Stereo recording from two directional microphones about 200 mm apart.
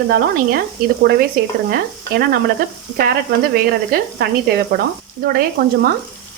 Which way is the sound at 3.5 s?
50° right (ahead or behind).